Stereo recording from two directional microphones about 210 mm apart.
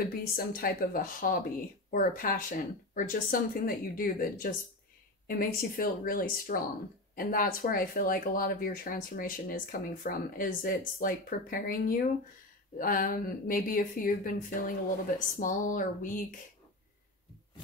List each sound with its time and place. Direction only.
0.0 s speech: 45° left (ahead or behind)